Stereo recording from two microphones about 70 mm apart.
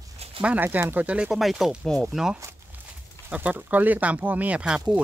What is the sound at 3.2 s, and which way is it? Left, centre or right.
Speech, right.